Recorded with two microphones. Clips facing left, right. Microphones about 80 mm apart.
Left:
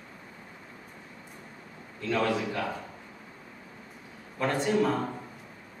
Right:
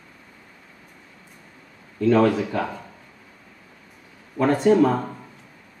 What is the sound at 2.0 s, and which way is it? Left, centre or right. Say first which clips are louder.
Speech: right 10 dB; right.